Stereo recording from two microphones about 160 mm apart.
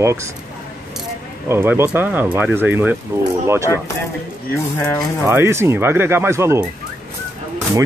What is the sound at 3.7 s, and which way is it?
Speech, 20° left (ahead or behind).